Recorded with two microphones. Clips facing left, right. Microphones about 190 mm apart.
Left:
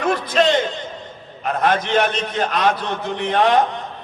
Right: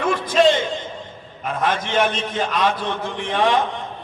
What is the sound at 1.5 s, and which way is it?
A man's voice, 45° left (ahead or behind).